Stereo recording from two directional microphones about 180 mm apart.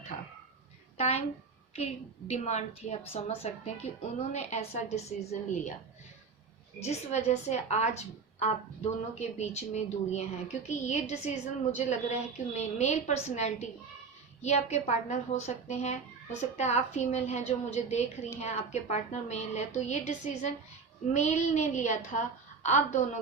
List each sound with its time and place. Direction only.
0.1 s a sound: 40° left (ahead or behind)
0.9 s speech: 35° left (ahead or behind)
6.8 s speech: 40° left (ahead or behind)